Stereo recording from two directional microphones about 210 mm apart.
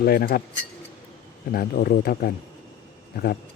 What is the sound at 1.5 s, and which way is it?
Speech, 45° left (ahead or behind).